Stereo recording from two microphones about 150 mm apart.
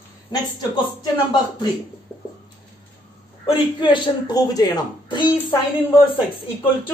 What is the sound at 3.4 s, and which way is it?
Speech, 35° left (ahead or behind).